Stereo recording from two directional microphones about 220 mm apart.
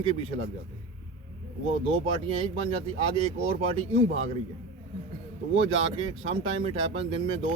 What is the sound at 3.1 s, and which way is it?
Speech, 25° right (ahead or behind).